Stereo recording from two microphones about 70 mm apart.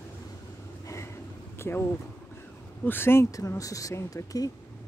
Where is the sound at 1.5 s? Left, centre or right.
Left.